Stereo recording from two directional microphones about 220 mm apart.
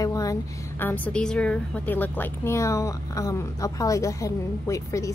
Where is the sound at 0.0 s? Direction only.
15° left (ahead or behind).